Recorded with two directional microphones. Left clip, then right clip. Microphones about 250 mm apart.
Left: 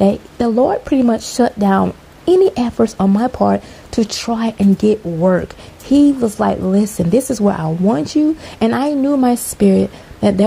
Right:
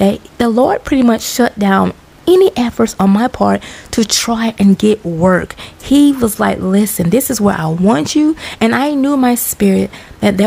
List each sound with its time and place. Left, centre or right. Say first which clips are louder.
0.0 s speech: right 1 dB; centre